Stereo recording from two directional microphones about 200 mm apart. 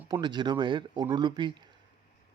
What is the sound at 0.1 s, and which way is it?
Speech, 20° right (ahead or behind).